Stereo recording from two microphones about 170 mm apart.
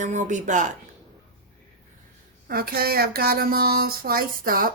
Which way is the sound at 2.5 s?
60° right (ahead or behind).